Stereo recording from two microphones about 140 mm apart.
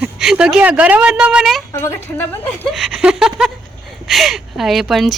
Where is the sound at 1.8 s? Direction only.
15° left (ahead or behind).